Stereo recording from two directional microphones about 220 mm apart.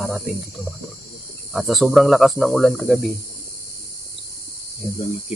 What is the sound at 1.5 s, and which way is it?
Speech, centre (ahead or behind).